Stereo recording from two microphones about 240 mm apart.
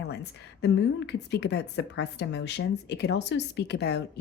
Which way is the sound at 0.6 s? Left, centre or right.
Left.